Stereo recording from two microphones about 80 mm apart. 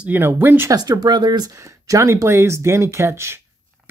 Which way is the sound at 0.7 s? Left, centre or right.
Right.